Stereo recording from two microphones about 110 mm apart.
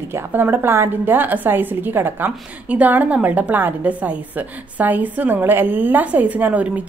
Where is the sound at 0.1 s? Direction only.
20° right (ahead or behind).